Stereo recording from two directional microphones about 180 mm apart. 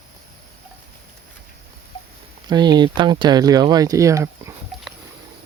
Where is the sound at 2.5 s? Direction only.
25° right (ahead or behind).